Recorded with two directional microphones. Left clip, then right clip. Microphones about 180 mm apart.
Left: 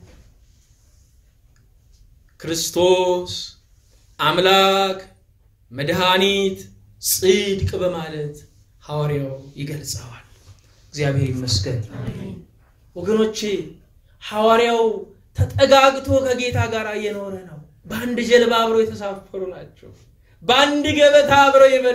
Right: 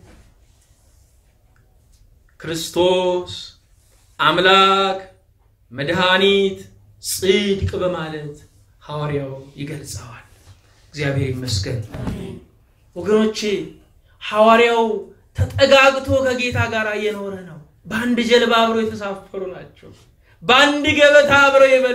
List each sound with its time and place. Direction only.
2.3 s a man's voice: 40° left (ahead or behind)
10.9 s a man's voice: 35° left (ahead or behind)
12.9 s a man's voice: 40° left (ahead or behind)
20.4 s a man's voice: 40° left (ahead or behind)